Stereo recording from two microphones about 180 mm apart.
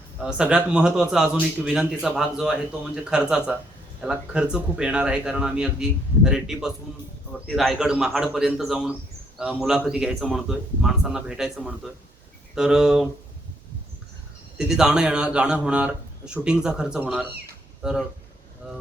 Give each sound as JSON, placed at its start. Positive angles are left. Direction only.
{"t": 0.2, "sound": "a man's voice", "side_deg": -5}
{"t": 14.8, "sound": "a man's voice", "side_deg": -5}